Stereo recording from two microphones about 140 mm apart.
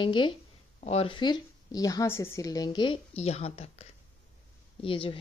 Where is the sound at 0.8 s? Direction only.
45° left (ahead or behind).